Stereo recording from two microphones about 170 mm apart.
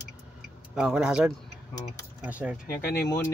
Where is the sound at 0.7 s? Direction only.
5° right (ahead or behind).